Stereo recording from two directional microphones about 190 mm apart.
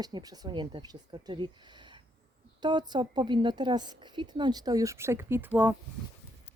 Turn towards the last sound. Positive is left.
turn(degrees=-10)  # may be behind; listen again after turning